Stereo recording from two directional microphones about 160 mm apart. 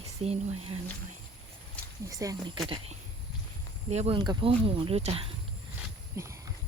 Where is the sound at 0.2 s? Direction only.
40° right (ahead or behind).